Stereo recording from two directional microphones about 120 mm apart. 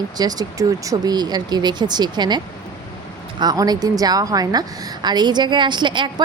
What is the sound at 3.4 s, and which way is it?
A woman's voice, 35° right (ahead or behind).